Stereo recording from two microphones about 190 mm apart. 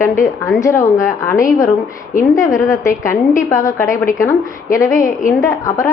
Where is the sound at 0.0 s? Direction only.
15° left (ahead or behind).